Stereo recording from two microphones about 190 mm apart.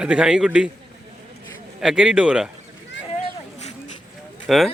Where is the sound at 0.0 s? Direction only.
5° right (ahead or behind).